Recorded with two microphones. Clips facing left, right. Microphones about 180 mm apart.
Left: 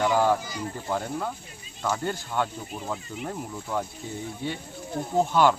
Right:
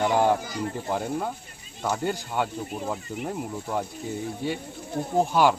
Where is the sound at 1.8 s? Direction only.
15° right (ahead or behind).